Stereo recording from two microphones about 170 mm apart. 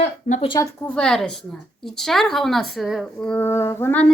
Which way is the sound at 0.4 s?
25° left (ahead or behind).